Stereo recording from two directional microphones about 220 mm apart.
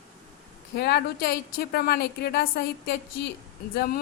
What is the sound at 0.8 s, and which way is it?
A woman's voice, 50° left (ahead or behind).